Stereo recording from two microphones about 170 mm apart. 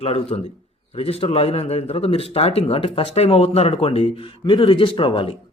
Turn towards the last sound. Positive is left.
turn(degrees=30)  # may be behind; listen again after turning